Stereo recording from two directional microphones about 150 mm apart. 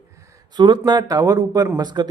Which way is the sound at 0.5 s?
30° right (ahead or behind).